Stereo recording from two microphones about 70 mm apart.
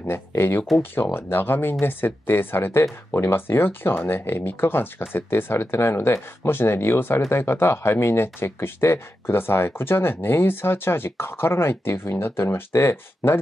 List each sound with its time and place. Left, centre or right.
0.1 s speech: left